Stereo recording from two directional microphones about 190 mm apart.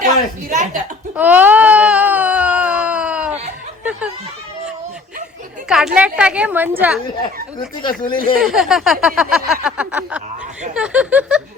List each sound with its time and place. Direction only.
0.5 s a woman's voice: 45° right (ahead or behind)
1.1 s baby cry: 10° right (ahead or behind)
5.6 s a sound: 5° right (ahead or behind)
6.0 s a woman's voice: 5° right (ahead or behind)
7.8 s speech: 25° left (ahead or behind)
8.4 s a sound: centre (ahead or behind)
10.8 s speech: 5° right (ahead or behind)